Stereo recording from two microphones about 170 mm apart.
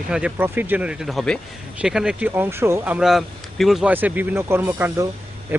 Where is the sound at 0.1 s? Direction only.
5° right (ahead or behind).